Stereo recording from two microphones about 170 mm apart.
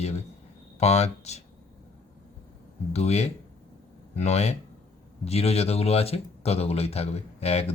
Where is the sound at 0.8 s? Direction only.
40° left (ahead or behind).